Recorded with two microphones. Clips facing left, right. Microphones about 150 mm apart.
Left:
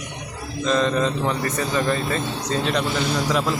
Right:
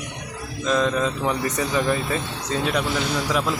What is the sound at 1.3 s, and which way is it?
Speech, 15° right (ahead or behind).